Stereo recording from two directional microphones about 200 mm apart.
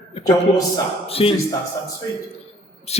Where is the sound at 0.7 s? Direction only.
30° left (ahead or behind).